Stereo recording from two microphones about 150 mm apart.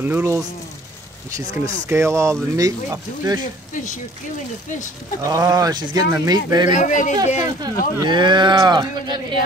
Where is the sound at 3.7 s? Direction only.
55° left (ahead or behind).